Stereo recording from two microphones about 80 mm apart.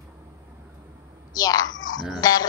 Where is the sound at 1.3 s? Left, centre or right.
Left.